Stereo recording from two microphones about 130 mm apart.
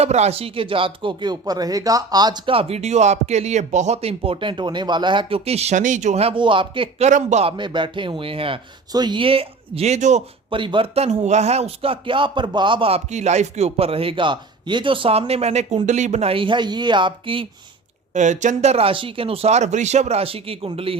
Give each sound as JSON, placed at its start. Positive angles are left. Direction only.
{"t": 0.0, "sound": "speech", "side_deg": -55}
{"t": 7.0, "sound": "a man's voice", "side_deg": -70}
{"t": 7.4, "sound": "speech", "side_deg": -35}
{"t": 8.9, "sound": "speech", "side_deg": -35}
{"t": 10.5, "sound": "speech", "side_deg": -40}
{"t": 13.1, "sound": "speech", "side_deg": -60}
{"t": 16.3, "sound": "speech", "side_deg": -40}
{"t": 18.1, "sound": "speech", "side_deg": -70}